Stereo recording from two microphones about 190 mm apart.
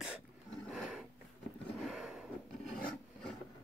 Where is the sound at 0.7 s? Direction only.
5° right (ahead or behind).